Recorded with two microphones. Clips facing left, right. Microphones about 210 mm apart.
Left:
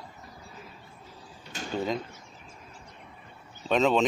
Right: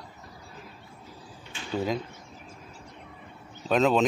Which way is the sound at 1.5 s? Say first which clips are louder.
Left 4 dB; 40° left (ahead or behind).